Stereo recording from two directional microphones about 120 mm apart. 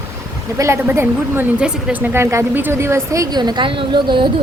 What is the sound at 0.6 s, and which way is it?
Speech, 20° right (ahead or behind).